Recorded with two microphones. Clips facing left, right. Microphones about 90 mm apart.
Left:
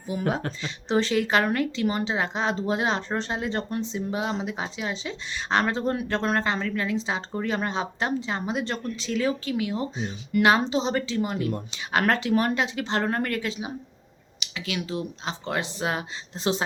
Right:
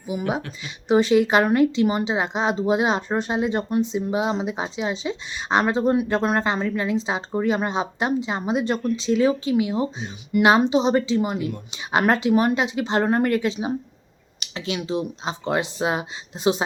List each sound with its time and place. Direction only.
0.1 s speech: 15° right (ahead or behind)
14.6 s speech: 20° right (ahead or behind)